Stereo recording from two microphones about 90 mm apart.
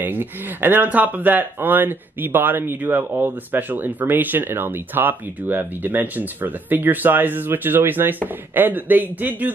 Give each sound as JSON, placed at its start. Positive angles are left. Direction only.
{"t": 0.0, "sound": "speech", "side_deg": -20}